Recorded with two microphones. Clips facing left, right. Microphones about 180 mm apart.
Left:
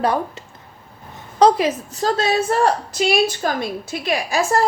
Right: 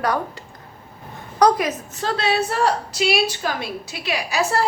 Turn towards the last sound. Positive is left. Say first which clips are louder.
# left 3 dB
turn(degrees=50)  # may be behind; listen again after turning